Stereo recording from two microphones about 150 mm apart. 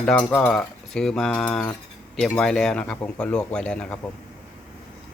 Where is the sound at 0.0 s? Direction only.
10° left (ahead or behind).